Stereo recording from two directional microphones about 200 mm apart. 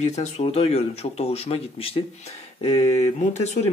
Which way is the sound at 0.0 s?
35° left (ahead or behind).